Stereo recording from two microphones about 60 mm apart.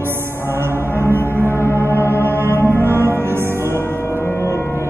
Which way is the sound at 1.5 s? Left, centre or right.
Left.